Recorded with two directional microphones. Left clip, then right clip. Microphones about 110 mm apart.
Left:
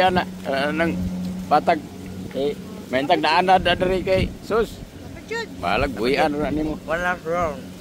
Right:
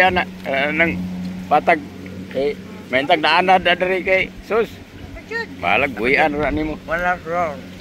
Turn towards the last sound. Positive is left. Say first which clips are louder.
# right 3 dB
turn(degrees=55)  # may be behind; listen again after turning